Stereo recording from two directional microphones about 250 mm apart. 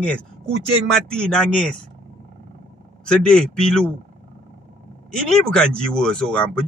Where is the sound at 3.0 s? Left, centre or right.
Centre.